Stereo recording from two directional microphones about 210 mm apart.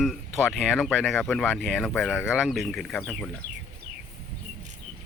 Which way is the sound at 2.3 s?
Centre (ahead or behind).